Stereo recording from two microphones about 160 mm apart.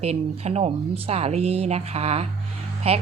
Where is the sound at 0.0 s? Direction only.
40° right (ahead or behind).